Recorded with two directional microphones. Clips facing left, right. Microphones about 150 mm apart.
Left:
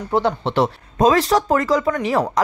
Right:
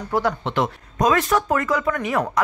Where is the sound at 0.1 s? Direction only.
25° left (ahead or behind).